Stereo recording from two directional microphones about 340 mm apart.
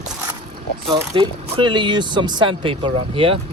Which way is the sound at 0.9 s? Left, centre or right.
Centre.